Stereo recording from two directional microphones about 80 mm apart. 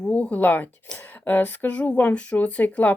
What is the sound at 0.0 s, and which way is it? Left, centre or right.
Speech, centre.